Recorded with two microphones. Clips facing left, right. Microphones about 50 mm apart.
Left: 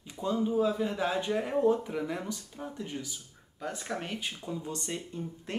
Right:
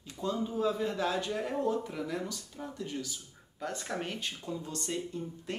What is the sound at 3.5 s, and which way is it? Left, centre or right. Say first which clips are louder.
Speech: even; centre.